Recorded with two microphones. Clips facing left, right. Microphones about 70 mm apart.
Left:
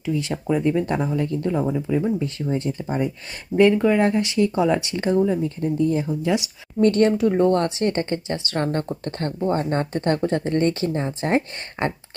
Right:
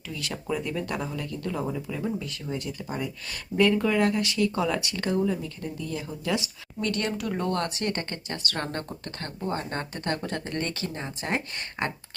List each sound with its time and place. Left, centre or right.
0.0 s speech: left
6.3 s speech: centre
6.8 s speech: left